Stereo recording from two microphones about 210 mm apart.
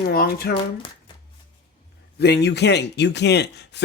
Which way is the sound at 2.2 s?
50° left (ahead or behind).